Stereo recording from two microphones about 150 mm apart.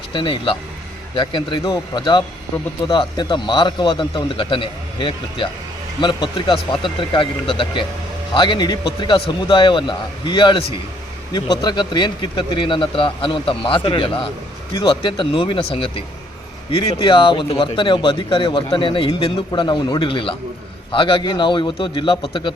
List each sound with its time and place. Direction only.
0.1 s speech: 35° left (ahead or behind)
16.7 s speech: 35° left (ahead or behind)